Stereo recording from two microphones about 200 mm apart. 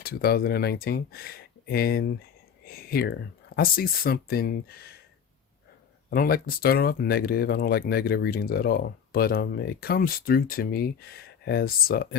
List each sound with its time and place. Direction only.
0.0 s speech: 50° left (ahead or behind)
6.1 s speech: 45° left (ahead or behind)